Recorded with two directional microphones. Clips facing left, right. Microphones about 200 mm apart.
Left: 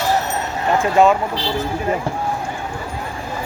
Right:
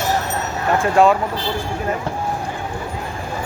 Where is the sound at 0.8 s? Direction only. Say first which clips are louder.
Even; centre (ahead or behind).